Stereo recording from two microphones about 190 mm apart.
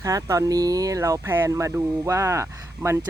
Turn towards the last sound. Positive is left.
turn(degrees=-15)  # may be behind; listen again after turning